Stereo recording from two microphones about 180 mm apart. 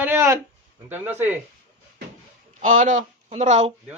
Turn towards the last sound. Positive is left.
turn(degrees=-40)  # may be behind; listen again after turning